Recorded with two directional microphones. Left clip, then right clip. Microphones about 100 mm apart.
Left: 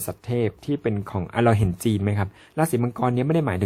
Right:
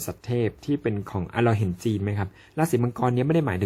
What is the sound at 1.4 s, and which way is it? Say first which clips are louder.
Speech: left 4 dB; 45° left (ahead or behind).